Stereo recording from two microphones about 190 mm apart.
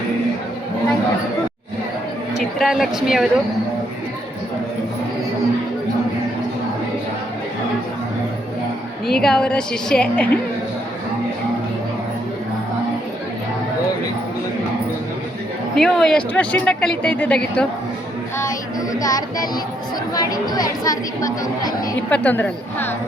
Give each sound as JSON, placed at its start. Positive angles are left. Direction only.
{"t": 2.4, "sound": "a woman's voice", "side_deg": 0}
{"t": 9.2, "sound": "speech", "side_deg": 5}
{"t": 15.7, "sound": "speech", "side_deg": 0}
{"t": 18.9, "sound": "a woman's voice", "side_deg": 20}